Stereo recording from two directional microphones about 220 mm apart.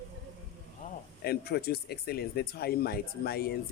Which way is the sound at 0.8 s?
35° left (ahead or behind).